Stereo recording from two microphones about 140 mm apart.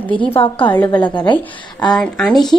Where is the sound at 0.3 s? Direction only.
40° left (ahead or behind).